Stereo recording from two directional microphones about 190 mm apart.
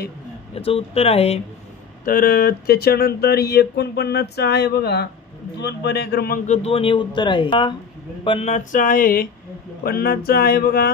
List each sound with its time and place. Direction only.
0.6 s a man's voice: 30° left (ahead or behind)
2.0 s a man's voice: 50° left (ahead or behind); by 7.7 s 25° left (ahead or behind)
8.2 s a sound: 30° left (ahead or behind); by 10.9 s 55° left (ahead or behind)